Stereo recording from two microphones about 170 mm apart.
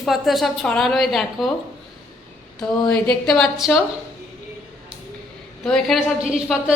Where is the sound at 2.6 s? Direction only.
5° left (ahead or behind).